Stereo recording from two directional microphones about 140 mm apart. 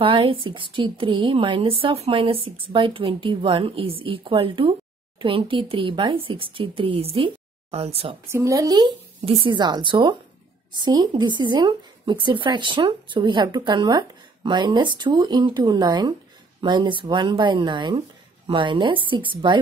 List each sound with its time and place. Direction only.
0.0 s a woman's voice: 40° right (ahead or behind)
8.3 s a woman's voice: 20° right (ahead or behind)
9.2 s a woman's voice: 40° right (ahead or behind)